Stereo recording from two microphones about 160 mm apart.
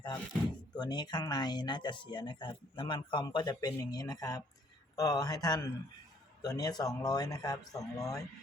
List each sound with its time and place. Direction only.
0.8 s speech: 25° left (ahead or behind)